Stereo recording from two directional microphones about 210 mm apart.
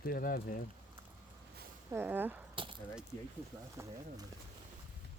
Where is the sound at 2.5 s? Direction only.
25° right (ahead or behind).